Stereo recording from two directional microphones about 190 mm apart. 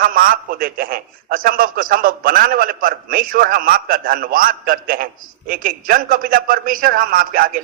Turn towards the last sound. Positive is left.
turn(degrees=-50)  # may be behind; listen again after turning